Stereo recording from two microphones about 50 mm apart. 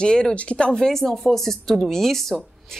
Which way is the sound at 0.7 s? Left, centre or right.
Centre.